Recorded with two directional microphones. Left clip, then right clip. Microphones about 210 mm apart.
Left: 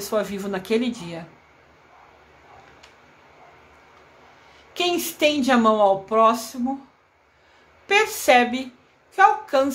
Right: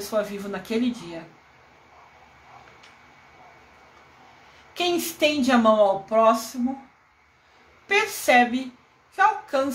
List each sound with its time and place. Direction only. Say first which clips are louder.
0.0 s speech: left 2 dB; 25° left (ahead or behind)
4.7 s speech: left 1 dB; 25° left (ahead or behind)
7.8 s speech: left 3 dB; 25° left (ahead or behind)